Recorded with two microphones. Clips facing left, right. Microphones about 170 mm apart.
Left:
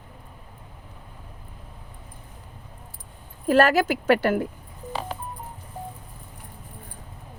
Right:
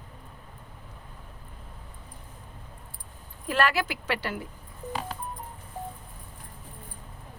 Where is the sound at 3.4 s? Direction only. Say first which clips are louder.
Left 8 dB; 40° left (ahead or behind).